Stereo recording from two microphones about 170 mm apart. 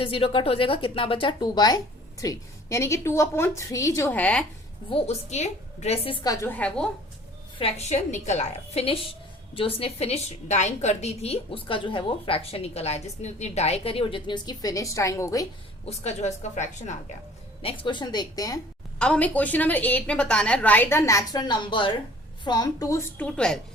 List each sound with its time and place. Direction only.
0.0 s a woman's voice: 30° left (ahead or behind); by 4.4 s 5° left (ahead or behind)
4.9 s a woman's voice: 35° left (ahead or behind)
6.2 s a woman's voice: 15° left (ahead or behind)
7.6 s a woman's voice: 40° left (ahead or behind); by 15.4 s 20° left (ahead or behind)
15.9 s a woman's voice: 40° left (ahead or behind)
17.6 s a woman's voice: 30° left (ahead or behind)
18.9 s a woman's voice: 5° left (ahead or behind)